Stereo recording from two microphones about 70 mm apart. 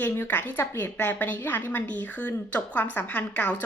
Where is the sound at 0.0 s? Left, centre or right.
Left.